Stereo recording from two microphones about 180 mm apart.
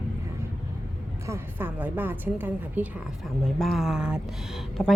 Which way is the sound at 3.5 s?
Centre (ahead or behind).